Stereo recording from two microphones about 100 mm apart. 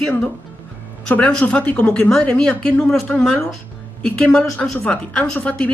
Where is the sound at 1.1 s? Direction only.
10° left (ahead or behind).